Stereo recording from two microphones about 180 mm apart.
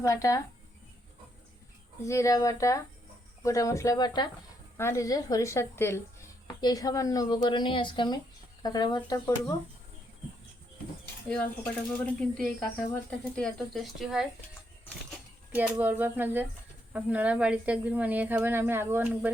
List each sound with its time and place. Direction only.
0.0 s speech: 20° left (ahead or behind)
2.0 s speech: 15° left (ahead or behind)
11.9 s speech: 5° left (ahead or behind)
15.5 s a woman's voice: 10° right (ahead or behind)